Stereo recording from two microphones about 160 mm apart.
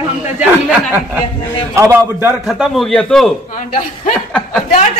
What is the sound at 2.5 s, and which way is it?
Speech, centre (ahead or behind).